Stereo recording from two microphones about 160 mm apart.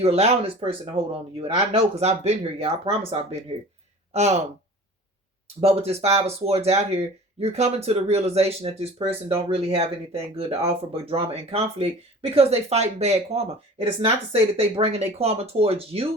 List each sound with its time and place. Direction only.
0.0 s speech: 40° right (ahead or behind)
5.5 s speech: 40° right (ahead or behind)